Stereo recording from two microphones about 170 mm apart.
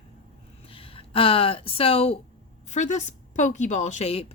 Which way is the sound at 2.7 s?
45° left (ahead or behind).